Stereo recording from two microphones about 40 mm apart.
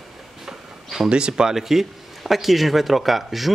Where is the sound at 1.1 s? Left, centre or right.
Right.